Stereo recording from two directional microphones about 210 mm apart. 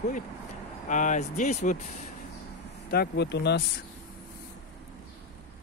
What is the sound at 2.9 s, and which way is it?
Speech, 50° left (ahead or behind).